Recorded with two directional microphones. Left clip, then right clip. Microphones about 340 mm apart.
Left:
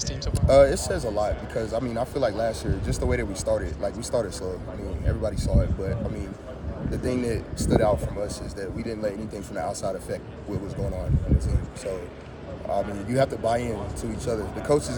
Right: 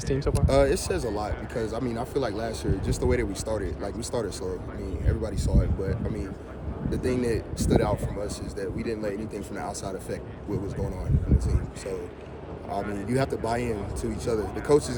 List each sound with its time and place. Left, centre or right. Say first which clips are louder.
0.0 s speech: right 5 dB; right
0.4 s speech: left 6 dB; centre
12.7 s speech: left 3 dB; centre